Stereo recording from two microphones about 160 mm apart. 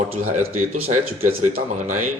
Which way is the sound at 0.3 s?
45° right (ahead or behind).